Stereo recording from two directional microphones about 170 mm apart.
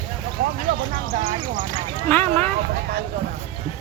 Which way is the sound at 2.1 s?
10° left (ahead or behind).